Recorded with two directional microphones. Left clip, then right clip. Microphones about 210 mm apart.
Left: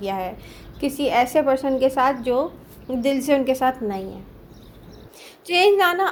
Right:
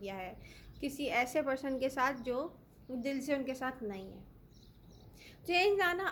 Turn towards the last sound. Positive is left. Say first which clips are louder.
# left 14 dB
turn(degrees=10)  # may be behind; listen again after turning